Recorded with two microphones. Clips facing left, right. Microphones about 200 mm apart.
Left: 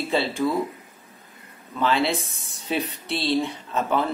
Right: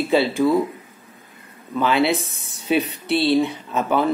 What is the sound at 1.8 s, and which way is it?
Speech, 5° right (ahead or behind).